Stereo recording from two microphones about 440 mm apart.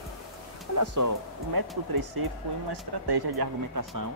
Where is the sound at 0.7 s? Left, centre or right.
Right.